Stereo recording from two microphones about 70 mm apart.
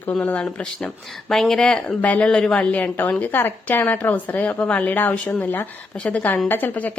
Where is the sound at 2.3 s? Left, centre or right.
Centre.